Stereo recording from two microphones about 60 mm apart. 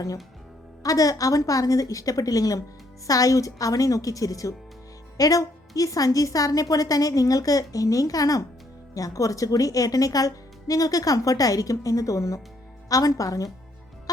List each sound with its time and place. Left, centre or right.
0.8 s speech: left
9.0 s speech: left
12.9 s a woman's voice: left